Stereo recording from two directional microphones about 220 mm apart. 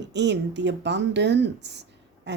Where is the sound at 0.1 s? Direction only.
50° right (ahead or behind).